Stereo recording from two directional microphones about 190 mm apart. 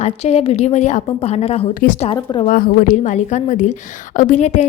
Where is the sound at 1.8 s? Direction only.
40° left (ahead or behind).